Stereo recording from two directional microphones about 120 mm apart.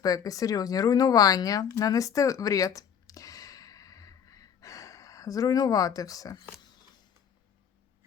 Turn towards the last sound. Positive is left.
turn(degrees=30)  # may be behind; listen again after turning